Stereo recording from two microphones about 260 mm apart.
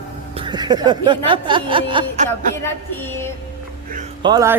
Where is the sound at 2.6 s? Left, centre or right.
Centre.